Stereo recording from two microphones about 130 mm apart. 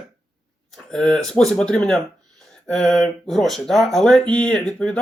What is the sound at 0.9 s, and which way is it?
Speech, 5° left (ahead or behind).